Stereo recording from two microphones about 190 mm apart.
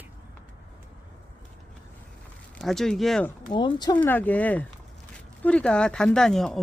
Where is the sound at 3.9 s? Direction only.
10° left (ahead or behind).